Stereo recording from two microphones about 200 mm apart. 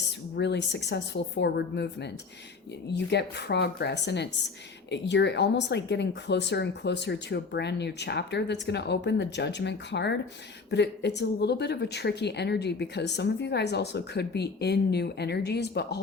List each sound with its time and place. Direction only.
0.3 s speech: 60° left (ahead or behind)